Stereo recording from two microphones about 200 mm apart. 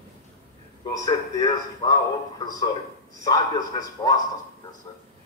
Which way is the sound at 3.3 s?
20° left (ahead or behind).